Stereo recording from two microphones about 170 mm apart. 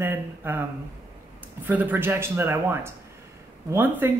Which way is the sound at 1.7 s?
10° right (ahead or behind).